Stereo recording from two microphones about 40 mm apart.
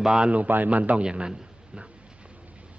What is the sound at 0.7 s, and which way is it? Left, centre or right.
Speech, right.